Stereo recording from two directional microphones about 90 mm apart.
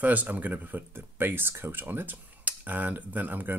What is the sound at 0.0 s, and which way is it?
Speech, 20° right (ahead or behind).